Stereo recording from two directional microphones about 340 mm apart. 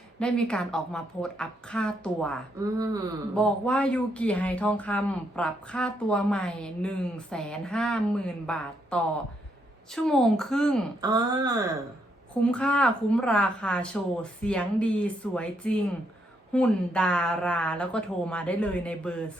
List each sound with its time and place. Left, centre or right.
0.2 s speech: centre
2.6 s speech: centre
3.3 s speech: centre
11.0 s speech: centre
12.4 s speech: centre